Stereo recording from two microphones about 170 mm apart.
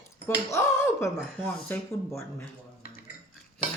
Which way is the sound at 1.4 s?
10° left (ahead or behind).